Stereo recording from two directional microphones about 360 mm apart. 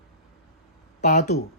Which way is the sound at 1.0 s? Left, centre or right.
Centre.